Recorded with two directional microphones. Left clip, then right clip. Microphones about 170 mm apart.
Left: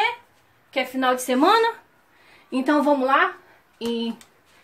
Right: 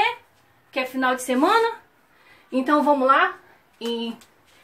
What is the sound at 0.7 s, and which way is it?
A woman's voice, 40° left (ahead or behind).